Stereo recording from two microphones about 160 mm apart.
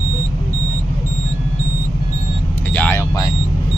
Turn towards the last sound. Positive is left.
turn(degrees=20)  # may be behind; listen again after turning